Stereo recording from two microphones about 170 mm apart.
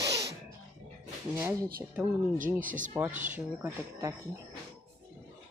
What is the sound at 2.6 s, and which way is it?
Speech, 50° right (ahead or behind).